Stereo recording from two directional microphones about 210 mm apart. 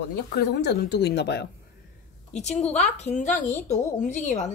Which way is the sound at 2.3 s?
30° left (ahead or behind).